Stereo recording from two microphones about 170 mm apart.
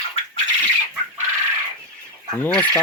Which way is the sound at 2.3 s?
10° left (ahead or behind).